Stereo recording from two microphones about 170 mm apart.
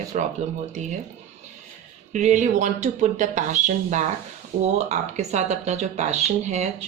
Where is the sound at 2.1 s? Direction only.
45° right (ahead or behind).